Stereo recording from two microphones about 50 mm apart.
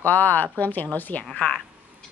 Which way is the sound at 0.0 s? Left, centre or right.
Left.